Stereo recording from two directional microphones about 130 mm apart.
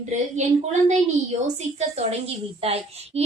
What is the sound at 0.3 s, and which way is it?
A woman's voice, 65° right (ahead or behind).